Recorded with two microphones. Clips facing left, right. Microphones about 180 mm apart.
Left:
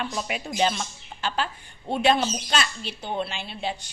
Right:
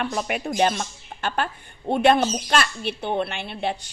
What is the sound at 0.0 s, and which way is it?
Speech, 55° right (ahead or behind).